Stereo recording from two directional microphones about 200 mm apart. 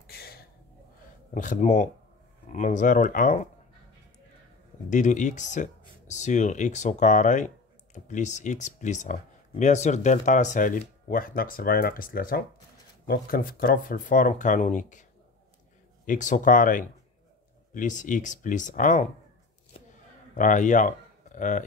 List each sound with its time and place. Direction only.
0.0 s a sound: 50° left (ahead or behind)
1.3 s speech: 40° left (ahead or behind)
4.8 s speech: 40° left (ahead or behind)
16.1 s speech: 40° left (ahead or behind)
20.3 s speech: 40° left (ahead or behind)